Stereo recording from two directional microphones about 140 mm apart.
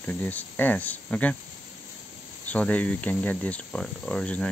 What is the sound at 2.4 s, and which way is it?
Speech, 10° left (ahead or behind).